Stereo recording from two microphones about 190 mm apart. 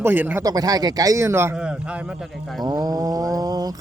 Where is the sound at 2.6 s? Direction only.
20° right (ahead or behind).